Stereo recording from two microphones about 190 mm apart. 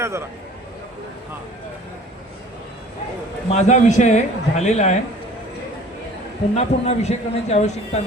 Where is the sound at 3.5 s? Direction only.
40° left (ahead or behind).